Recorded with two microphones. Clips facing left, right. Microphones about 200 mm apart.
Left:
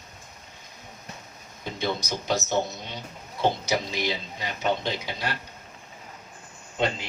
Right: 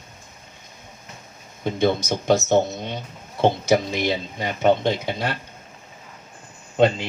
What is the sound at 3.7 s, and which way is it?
Speech, 50° right (ahead or behind).